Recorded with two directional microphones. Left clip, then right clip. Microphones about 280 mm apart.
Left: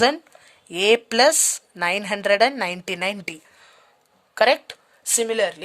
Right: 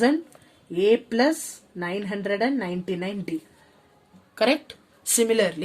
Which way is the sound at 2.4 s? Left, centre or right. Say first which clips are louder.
Left 5 dB; left.